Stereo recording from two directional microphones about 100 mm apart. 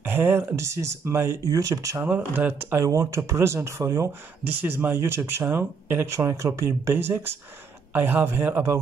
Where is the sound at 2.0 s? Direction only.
20° right (ahead or behind).